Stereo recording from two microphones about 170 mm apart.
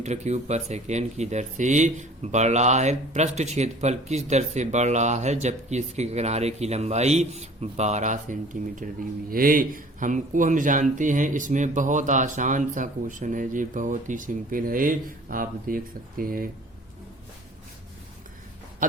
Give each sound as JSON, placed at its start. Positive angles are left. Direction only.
{"t": 0.0, "sound": "speech", "side_deg": -40}
{"t": 18.8, "sound": "speech", "side_deg": -50}